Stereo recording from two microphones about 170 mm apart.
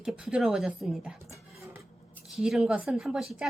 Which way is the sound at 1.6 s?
15° right (ahead or behind).